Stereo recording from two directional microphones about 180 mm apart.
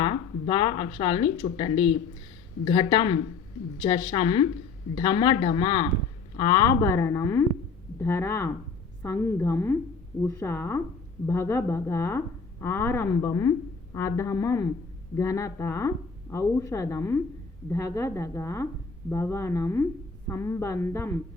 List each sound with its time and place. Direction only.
0.0 s a woman's voice: 25° left (ahead or behind)